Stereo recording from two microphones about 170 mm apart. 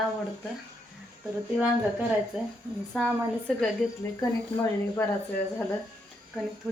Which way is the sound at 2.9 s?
5° left (ahead or behind).